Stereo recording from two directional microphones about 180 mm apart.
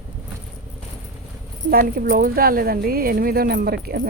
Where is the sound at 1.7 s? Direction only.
55° right (ahead or behind).